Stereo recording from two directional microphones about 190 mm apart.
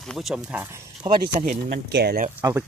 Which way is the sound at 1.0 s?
25° right (ahead or behind).